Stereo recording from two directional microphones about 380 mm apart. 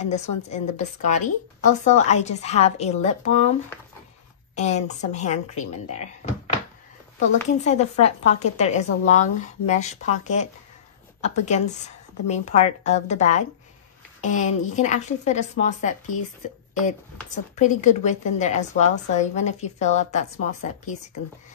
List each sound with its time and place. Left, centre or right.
0.0 s a woman's voice: centre
4.6 s a woman's voice: centre
17.6 s a woman's voice: centre